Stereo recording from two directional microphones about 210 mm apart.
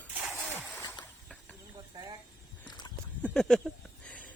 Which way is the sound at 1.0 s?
20° left (ahead or behind).